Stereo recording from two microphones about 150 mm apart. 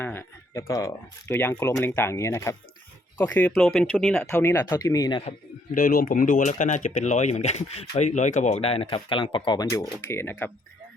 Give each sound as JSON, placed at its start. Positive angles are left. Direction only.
{"t": 0.0, "sound": "speech", "side_deg": 15}
{"t": 3.5, "sound": "speech", "side_deg": 0}
{"t": 4.3, "sound": "speech", "side_deg": 15}
{"t": 5.7, "sound": "speech", "side_deg": 75}